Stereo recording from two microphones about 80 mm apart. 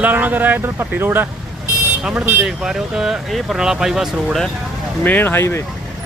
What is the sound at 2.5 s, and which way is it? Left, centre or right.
Speech, centre.